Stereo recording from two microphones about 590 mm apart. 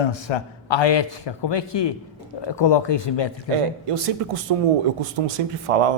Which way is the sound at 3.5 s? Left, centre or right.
Right.